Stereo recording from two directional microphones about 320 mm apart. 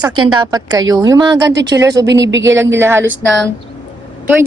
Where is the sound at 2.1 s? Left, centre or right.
Right.